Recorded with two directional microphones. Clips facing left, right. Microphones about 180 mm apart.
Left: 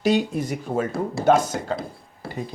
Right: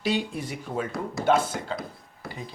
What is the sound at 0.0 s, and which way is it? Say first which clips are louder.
A woman's voice: left 7 dB; 45° left (ahead or behind).